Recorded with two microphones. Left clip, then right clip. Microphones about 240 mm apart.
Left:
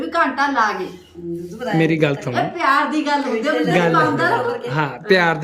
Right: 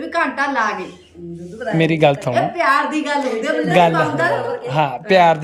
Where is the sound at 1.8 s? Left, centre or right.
Centre.